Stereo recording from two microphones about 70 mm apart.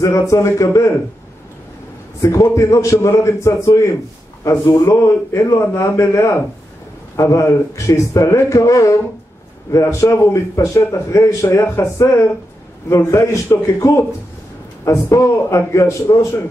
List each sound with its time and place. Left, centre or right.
0.0 s a man's voice: left
2.2 s a man's voice: left
11.6 s speech: left
12.0 s a man's voice: left